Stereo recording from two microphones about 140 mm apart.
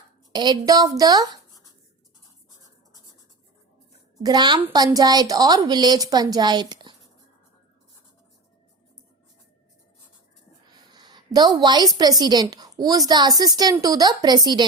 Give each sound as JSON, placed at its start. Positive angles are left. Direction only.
{"t": 0.3, "sound": "a woman's voice", "side_deg": -30}
{"t": 4.2, "sound": "a woman's voice", "side_deg": -30}
{"t": 10.9, "sound": "a sound", "side_deg": -30}
{"t": 11.9, "sound": "a woman's voice", "side_deg": -30}